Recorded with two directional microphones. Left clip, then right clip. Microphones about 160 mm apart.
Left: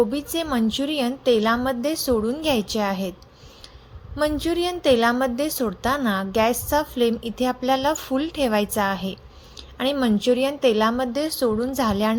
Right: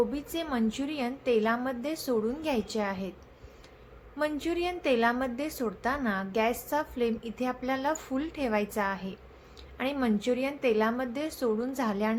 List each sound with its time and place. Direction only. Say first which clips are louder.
0.1 s a woman's voice: left 8 dB; 40° left (ahead or behind)
4.2 s a woman's voice: left 8 dB; 35° left (ahead or behind)